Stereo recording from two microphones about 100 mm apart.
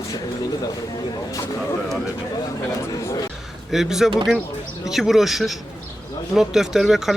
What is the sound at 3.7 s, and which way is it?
Speech, 5° right (ahead or behind).